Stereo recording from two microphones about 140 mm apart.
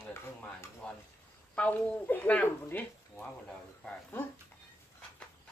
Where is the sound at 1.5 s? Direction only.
10° left (ahead or behind).